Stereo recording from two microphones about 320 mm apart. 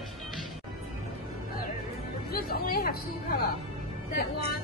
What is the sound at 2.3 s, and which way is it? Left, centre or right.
A woman's voice, left.